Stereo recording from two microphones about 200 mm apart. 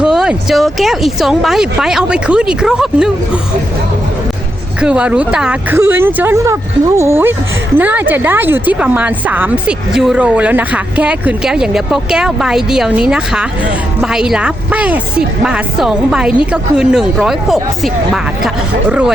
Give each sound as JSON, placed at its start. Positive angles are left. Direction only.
{"t": 0.0, "sound": "speech", "side_deg": -5}
{"t": 4.8, "sound": "speech", "side_deg": -5}